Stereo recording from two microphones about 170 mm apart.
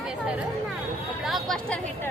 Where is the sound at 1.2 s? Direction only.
Centre (ahead or behind).